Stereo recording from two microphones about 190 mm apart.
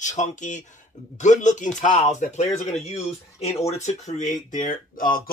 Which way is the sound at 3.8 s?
40° left (ahead or behind).